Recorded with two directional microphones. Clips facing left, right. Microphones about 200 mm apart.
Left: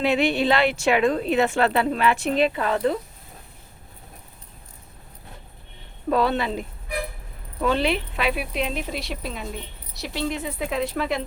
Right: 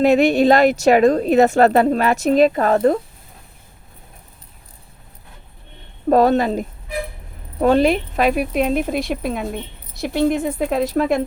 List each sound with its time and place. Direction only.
0.0 s speech: 45° right (ahead or behind)
6.1 s speech: 45° right (ahead or behind)